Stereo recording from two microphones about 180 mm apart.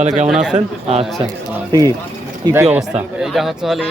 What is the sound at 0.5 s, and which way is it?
Speech, 35° right (ahead or behind).